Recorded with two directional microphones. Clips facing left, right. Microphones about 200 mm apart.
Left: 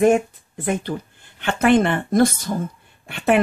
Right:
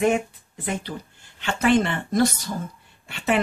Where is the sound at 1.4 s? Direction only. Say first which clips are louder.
Left 4 dB; 55° left (ahead or behind).